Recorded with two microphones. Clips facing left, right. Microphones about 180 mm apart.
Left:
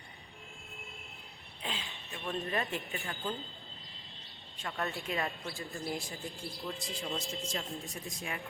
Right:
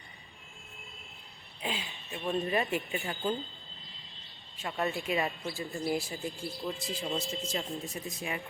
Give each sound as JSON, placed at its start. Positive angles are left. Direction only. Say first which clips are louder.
{"t": 1.6, "sound": "speech", "louder": "right 4 dB", "side_deg": -15}
{"t": 4.5, "sound": "speech", "louder": "right 5 dB", "side_deg": -5}